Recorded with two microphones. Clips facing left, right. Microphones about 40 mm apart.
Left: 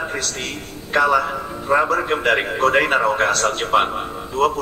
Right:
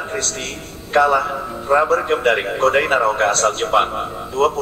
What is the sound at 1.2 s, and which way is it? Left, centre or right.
A man's voice, centre.